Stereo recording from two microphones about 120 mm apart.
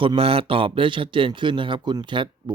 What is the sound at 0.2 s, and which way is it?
A man's voice, 50° right (ahead or behind).